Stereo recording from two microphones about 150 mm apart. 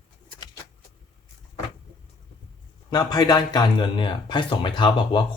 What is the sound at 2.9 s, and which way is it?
Speech, 25° left (ahead or behind).